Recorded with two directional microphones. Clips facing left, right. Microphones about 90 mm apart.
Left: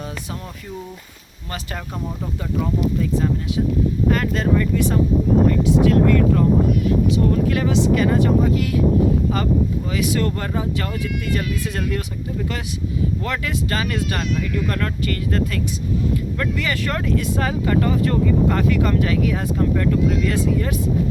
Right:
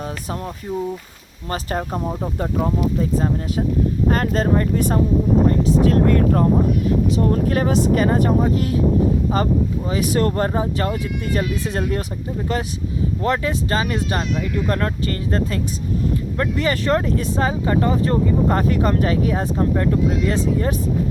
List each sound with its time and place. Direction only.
1.5 s speech: 35° right (ahead or behind)
9.9 s speech: 40° right (ahead or behind)